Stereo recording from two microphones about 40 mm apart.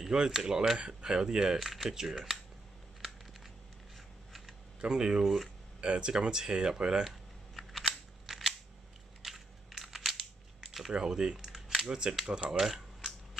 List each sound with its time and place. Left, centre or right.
0.0 s speech: centre
0.7 s speech: right
1.6 s speech: centre
4.8 s speech: right
5.2 s speech: centre
5.8 s speech: right
7.5 s scissors: centre
8.3 s camera: centre
9.2 s scissors: centre
10.9 s speech: centre
12.5 s typing: centre